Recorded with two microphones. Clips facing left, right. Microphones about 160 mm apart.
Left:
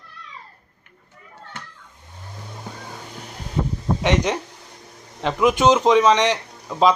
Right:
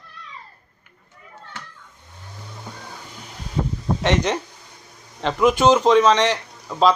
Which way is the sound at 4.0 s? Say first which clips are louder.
Even; 10° left (ahead or behind).